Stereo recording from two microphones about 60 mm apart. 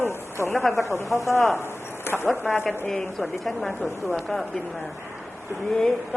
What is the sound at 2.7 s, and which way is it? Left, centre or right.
A woman's voice, centre.